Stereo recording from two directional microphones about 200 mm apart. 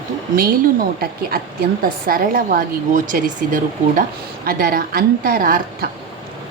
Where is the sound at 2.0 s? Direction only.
45° right (ahead or behind).